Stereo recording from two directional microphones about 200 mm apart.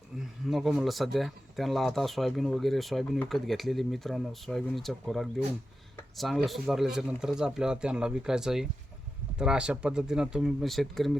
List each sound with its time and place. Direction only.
0.4 s speech: centre (ahead or behind)